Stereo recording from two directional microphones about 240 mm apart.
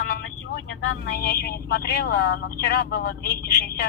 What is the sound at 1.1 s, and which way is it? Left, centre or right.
A man's voice, left.